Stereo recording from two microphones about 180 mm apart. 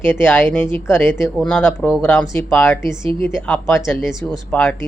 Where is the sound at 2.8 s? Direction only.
25° right (ahead or behind).